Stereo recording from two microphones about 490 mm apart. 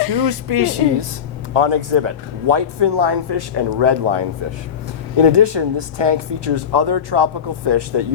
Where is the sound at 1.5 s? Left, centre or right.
Right.